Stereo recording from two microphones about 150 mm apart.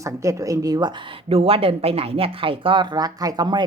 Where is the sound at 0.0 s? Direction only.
20° right (ahead or behind).